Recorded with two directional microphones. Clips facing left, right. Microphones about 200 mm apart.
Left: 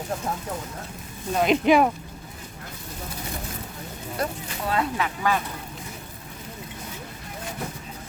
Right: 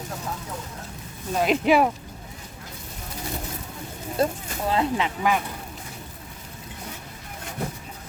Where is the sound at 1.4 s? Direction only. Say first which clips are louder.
Left 1 dB; 5° right (ahead or behind).